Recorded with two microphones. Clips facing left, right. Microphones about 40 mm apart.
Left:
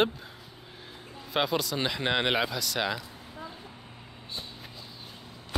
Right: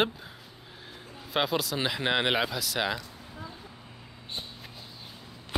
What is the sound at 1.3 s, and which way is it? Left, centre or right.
Speech, centre.